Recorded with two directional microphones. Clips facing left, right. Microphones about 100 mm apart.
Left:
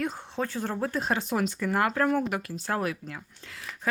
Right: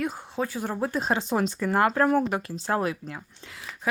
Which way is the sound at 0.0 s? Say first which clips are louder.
Right 2 dB; 5° right (ahead or behind).